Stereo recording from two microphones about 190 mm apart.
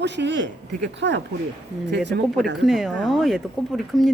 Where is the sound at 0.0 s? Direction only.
65° right (ahead or behind).